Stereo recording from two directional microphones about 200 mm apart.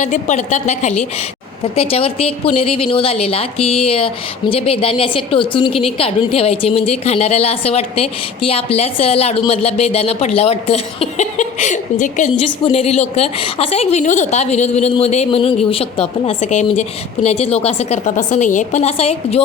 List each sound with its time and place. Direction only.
0.0 s speech: 40° left (ahead or behind)